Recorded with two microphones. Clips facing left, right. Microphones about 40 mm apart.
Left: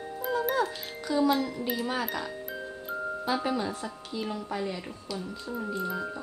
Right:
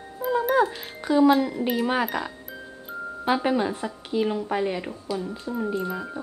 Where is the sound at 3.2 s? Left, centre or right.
Right.